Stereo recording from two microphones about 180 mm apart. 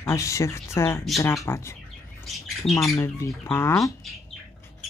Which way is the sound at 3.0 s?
15° left (ahead or behind).